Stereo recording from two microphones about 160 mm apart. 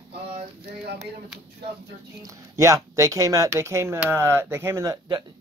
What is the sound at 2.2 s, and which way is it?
Speech, 20° right (ahead or behind).